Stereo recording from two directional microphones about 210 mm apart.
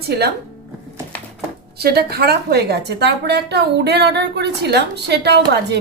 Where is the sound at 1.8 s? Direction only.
50° right (ahead or behind).